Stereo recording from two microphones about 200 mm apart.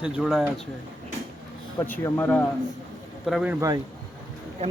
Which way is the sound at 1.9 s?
10° left (ahead or behind).